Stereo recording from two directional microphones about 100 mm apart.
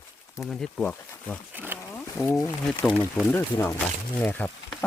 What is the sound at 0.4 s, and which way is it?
Speech, 5° left (ahead or behind).